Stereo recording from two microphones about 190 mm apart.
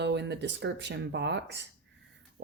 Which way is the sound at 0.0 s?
65° right (ahead or behind).